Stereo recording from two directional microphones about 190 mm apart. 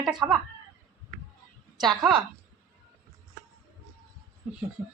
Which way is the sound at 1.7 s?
Centre (ahead or behind).